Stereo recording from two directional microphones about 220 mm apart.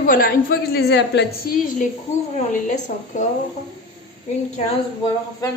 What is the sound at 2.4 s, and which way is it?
Speech, 30° left (ahead or behind).